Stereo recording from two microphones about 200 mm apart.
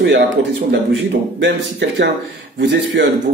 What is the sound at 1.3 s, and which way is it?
Speech, 60° right (ahead or behind).